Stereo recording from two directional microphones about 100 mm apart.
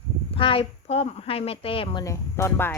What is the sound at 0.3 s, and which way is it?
Speech, 65° left (ahead or behind).